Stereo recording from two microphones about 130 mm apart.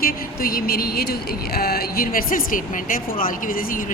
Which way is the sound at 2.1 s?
90° left.